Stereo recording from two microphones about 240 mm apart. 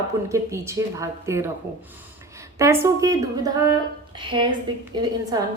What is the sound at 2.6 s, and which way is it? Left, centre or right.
A woman's voice, centre.